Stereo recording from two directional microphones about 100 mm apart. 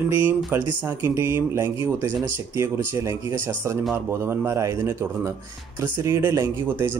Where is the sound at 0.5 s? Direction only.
20° right (ahead or behind).